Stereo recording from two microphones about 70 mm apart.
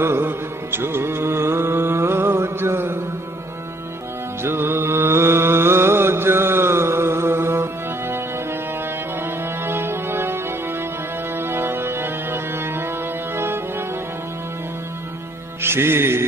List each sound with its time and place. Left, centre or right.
0.0 s music: right
4.4 s music: right
9.7 s music: right
15.6 s music: right